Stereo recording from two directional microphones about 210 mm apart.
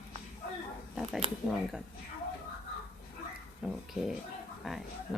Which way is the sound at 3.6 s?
Centre (ahead or behind).